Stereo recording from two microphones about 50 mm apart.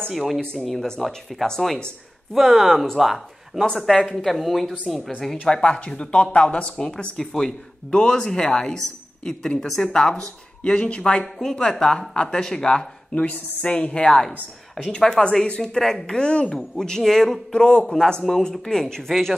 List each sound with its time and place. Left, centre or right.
0.1 s speech: centre
0.4 s speech: centre
5.5 s speech: centre
17.5 s speech: centre